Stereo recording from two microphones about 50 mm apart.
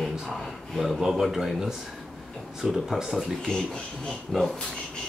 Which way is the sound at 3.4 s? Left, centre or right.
Centre.